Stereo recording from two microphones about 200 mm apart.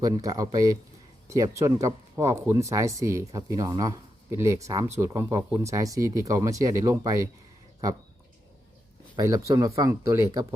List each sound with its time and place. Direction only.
0.0 s speech: 15° right (ahead or behind)
9.1 s speech: 15° right (ahead or behind)